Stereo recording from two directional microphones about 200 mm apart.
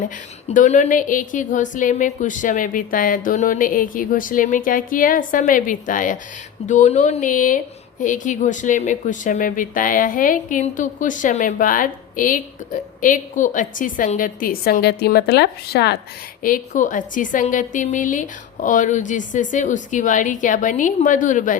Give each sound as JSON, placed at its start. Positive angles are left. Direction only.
{"t": 0.4, "sound": "speech", "side_deg": 35}
{"t": 16.4, "sound": "speech", "side_deg": 40}